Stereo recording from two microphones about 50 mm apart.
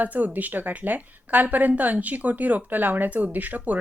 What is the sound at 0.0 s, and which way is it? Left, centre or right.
A woman's voice, right.